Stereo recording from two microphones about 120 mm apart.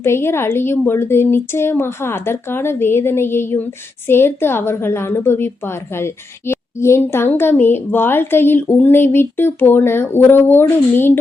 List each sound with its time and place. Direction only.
0.0 s a woman's voice: 20° left (ahead or behind)
6.5 s speech: 20° left (ahead or behind)